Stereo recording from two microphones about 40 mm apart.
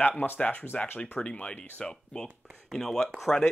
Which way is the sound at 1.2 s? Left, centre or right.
Left.